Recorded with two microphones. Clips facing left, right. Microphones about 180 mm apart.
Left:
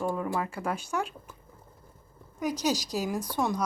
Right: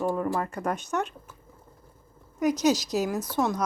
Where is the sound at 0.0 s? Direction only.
10° right (ahead or behind).